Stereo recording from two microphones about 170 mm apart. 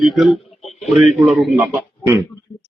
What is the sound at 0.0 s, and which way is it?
A man's voice, centre (ahead or behind).